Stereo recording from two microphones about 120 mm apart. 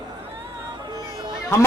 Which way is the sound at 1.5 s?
25° left (ahead or behind).